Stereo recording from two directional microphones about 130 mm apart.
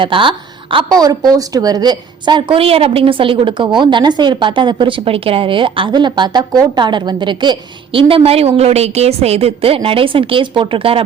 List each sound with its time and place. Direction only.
0.0 s a woman's voice: 40° right (ahead or behind)